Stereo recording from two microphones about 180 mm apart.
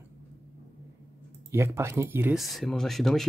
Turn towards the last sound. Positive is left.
turn(degrees=0)  # may be behind; listen again after turning